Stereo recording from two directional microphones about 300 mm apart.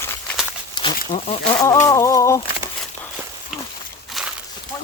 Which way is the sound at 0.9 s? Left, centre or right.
Left.